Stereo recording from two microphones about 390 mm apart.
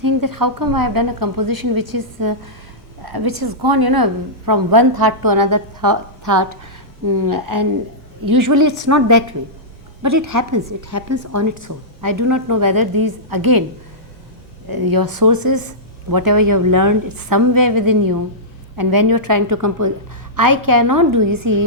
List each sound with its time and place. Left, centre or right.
0.0 s speech: right
3.0 s a sound: right
3.4 s a woman's voice: right
14.7 s speech: right